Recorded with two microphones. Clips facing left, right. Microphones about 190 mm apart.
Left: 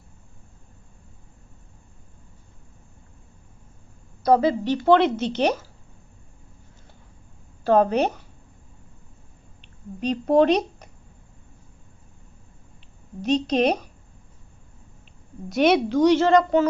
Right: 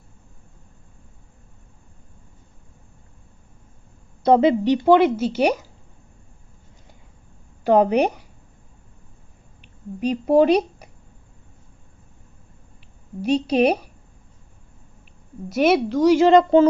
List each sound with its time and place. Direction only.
4.2 s a woman's voice: 25° right (ahead or behind)
7.6 s a woman's voice: 15° right (ahead or behind)
9.6 s a sound: 10° right (ahead or behind)
13.2 s a woman's voice: 10° right (ahead or behind)
15.4 s a woman's voice: 5° right (ahead or behind)
16.1 s speech: 20° right (ahead or behind)